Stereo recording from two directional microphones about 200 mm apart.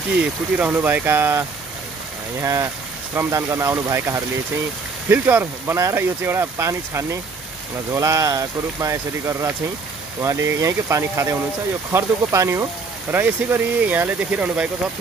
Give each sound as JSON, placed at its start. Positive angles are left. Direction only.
{"t": 0.6, "sound": "speech", "side_deg": -10}
{"t": 2.4, "sound": "speech", "side_deg": -15}